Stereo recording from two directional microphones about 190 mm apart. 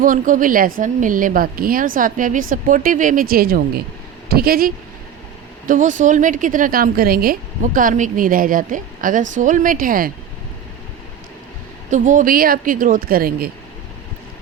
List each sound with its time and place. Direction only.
0.0 s a woman's voice: 45° right (ahead or behind)
11.9 s a woman's voice: 40° right (ahead or behind)